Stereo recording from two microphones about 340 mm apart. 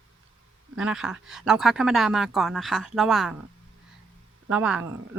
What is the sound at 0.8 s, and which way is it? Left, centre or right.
Speech, centre.